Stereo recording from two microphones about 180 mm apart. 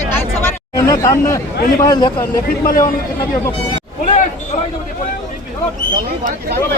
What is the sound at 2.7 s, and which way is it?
Speech, 50° left (ahead or behind).